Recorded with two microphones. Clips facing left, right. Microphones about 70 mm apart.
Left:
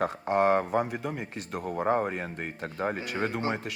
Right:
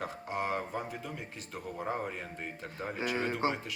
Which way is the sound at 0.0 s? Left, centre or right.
Left.